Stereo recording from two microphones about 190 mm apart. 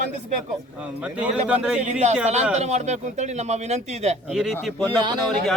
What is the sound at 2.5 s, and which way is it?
Speech, 35° right (ahead or behind).